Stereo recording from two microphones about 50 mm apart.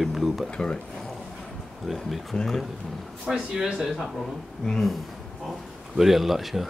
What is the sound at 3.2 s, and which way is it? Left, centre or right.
Speech, centre.